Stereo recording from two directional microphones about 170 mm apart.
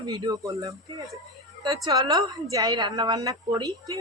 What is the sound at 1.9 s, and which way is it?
A woman's voice, 20° right (ahead or behind).